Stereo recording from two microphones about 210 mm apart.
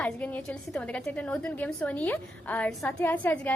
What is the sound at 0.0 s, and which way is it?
A woman's voice, 5° left (ahead or behind).